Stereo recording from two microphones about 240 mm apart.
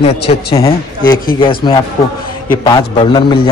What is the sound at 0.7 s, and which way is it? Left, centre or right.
A man's voice, centre.